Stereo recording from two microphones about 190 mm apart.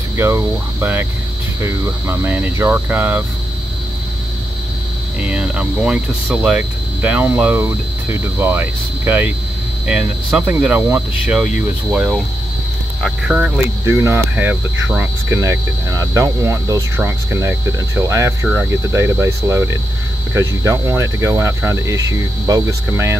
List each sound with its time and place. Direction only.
0.2 s speech: 15° right (ahead or behind)
5.2 s speech: 5° right (ahead or behind)
13.8 s speech: 15° right (ahead or behind)